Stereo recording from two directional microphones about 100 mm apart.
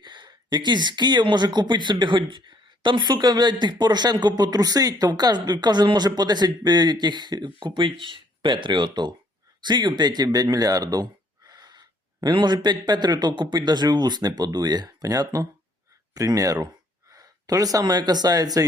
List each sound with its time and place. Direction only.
0.0 s speech: 50° right (ahead or behind)